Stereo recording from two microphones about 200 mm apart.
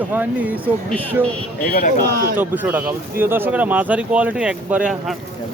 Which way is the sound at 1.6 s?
50° left (ahead or behind).